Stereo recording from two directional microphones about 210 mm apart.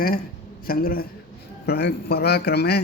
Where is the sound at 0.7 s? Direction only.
45° left (ahead or behind).